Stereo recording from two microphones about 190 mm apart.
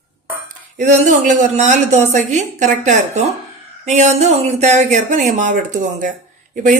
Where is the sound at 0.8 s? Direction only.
40° right (ahead or behind).